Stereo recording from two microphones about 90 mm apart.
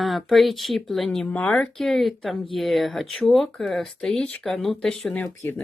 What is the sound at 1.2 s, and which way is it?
Speech, 15° left (ahead or behind).